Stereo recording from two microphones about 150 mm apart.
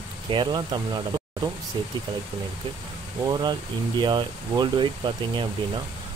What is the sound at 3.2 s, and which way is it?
Speech, 30° right (ahead or behind).